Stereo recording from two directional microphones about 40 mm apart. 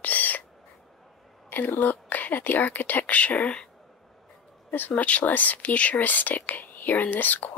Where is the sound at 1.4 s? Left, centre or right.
Left.